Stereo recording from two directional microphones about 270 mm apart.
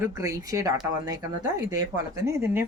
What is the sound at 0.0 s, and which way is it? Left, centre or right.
Speech, centre.